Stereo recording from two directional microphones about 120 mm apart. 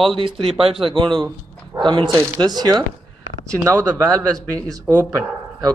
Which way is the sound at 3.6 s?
25° right (ahead or behind).